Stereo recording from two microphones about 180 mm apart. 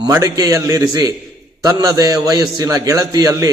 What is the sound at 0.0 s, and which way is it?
Speech, 20° right (ahead or behind).